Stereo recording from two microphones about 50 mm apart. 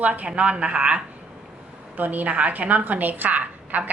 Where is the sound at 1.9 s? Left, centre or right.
Right.